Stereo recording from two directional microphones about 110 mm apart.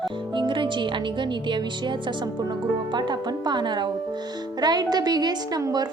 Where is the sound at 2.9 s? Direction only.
45° right (ahead or behind).